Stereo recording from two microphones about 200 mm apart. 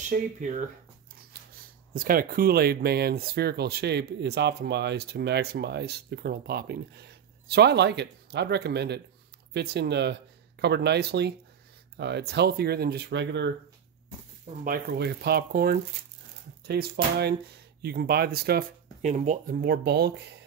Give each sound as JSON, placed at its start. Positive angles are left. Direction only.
{"t": 0.1, "sound": "speech", "side_deg": -40}
{"t": 2.0, "sound": "speech", "side_deg": -45}
{"t": 14.6, "sound": "speech", "side_deg": -50}
{"t": 19.0, "sound": "speech", "side_deg": -35}
{"t": 19.6, "sound": "speech", "side_deg": -55}